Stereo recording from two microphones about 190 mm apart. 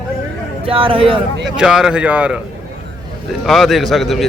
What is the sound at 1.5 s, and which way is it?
Speech, 5° right (ahead or behind).